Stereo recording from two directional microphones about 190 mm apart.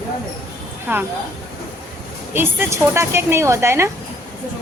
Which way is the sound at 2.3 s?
10° right (ahead or behind).